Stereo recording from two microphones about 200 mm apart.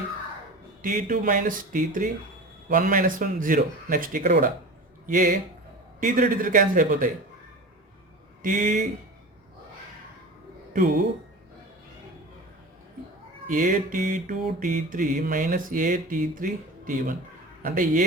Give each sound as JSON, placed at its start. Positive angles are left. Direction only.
{"t": 0.8, "sound": "mantra", "side_deg": -40}
{"t": 8.4, "sound": "mantra", "side_deg": -45}
{"t": 13.5, "sound": "mantra", "side_deg": -45}